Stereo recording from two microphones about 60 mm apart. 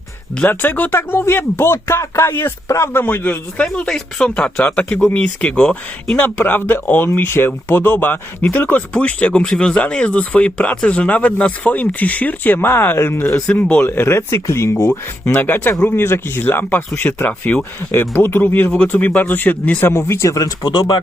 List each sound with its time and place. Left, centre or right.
0.4 s speech: left
1.9 s speech: left
3.8 s speech: centre
6.1 s speech: left
8.7 s speech: left
13.5 s speech: left
13.8 s speech: left
15.3 s speech: left
17.6 s speech: left
19.9 s speech: left
20.3 s speech: left